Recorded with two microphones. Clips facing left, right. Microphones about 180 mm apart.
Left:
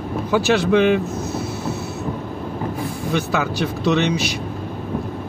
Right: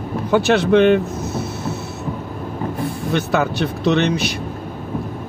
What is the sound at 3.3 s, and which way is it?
Speech, 60° right (ahead or behind).